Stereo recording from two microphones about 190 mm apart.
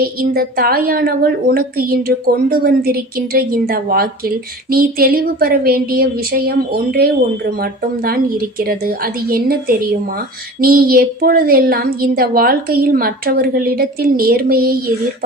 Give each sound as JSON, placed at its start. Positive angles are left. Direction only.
{"t": 0.0, "sound": "a woman's voice", "side_deg": -55}